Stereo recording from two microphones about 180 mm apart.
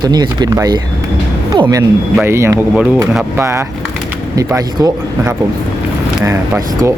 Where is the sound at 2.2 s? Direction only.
15° right (ahead or behind).